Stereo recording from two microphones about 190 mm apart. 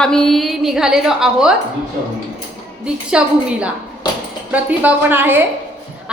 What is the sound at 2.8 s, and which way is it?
A woman's voice, 5° right (ahead or behind).